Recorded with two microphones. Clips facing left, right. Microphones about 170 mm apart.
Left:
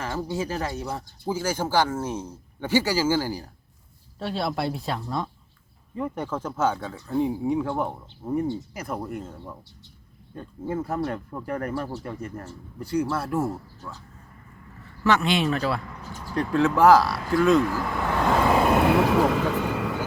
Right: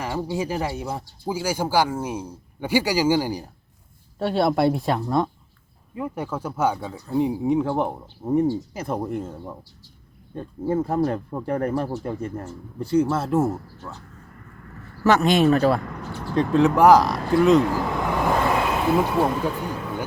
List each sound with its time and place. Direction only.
0.0 s speech: 15° right (ahead or behind)
4.2 s speech: 55° right (ahead or behind)
5.9 s speech: 10° right (ahead or behind); by 14.0 s 25° right (ahead or behind)
15.0 s speech: 45° right (ahead or behind)
16.3 s speech: 20° right (ahead or behind)
18.9 s speech: 90° left